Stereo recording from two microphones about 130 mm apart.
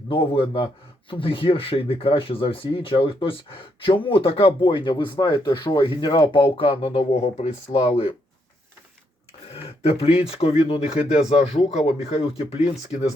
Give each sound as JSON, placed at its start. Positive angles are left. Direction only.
{"t": 0.1, "sound": "speech", "side_deg": 40}
{"t": 9.5, "sound": "speech", "side_deg": 50}